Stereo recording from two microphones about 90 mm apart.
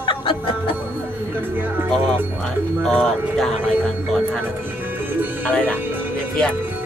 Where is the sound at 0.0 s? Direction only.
65° left (ahead or behind).